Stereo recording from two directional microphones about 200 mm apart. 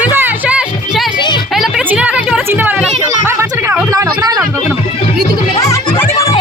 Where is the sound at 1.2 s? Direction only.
20° left (ahead or behind).